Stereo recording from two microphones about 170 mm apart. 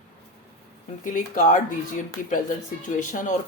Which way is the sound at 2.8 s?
50° left (ahead or behind).